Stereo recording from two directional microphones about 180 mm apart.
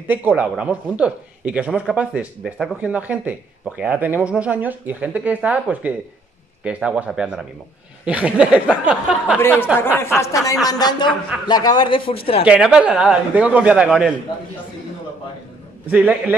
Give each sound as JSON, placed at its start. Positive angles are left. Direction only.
{"t": 0.1, "sound": "a man's voice", "side_deg": -10}
{"t": 9.4, "sound": "a woman's voice", "side_deg": 10}
{"t": 12.4, "sound": "a man's voice", "side_deg": -5}
{"t": 15.9, "sound": "speech", "side_deg": -5}